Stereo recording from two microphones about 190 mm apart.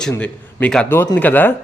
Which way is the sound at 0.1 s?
5° left (ahead or behind).